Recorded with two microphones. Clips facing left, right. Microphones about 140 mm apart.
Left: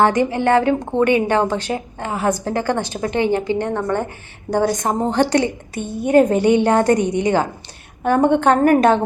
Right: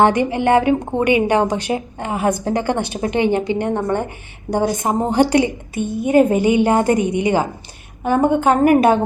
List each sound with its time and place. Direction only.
0.0 s a woman's voice: 15° right (ahead or behind)